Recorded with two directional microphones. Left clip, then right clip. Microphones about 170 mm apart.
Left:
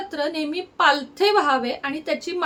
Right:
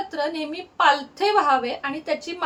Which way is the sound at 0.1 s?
30° left (ahead or behind).